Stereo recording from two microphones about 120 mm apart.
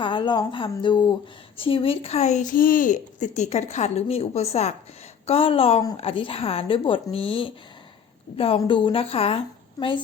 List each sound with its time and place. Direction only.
0.0 s a woman's voice: 40° left (ahead or behind); by 4.7 s 60° left (ahead or behind)
5.2 s speech: 50° left (ahead or behind)